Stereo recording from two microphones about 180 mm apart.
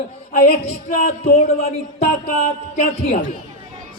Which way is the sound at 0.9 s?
55° left (ahead or behind).